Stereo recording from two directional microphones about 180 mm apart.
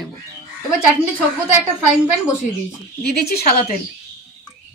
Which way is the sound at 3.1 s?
55° left (ahead or behind).